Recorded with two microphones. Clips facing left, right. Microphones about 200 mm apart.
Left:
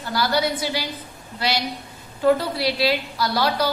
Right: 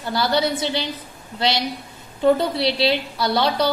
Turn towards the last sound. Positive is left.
turn(degrees=-25)  # may be behind; listen again after turning